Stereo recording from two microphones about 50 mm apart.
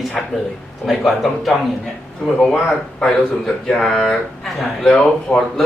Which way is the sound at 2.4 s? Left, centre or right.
Centre.